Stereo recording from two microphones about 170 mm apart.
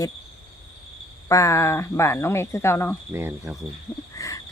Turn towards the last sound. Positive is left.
turn(degrees=20)  # may be behind; listen again after turning